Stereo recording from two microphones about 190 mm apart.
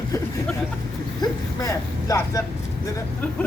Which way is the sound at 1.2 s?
20° left (ahead or behind).